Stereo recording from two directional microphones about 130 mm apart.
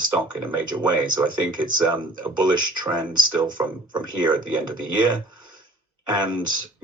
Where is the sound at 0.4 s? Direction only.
35° right (ahead or behind).